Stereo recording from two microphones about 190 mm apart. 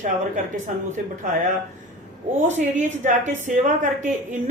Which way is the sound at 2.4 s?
40° right (ahead or behind).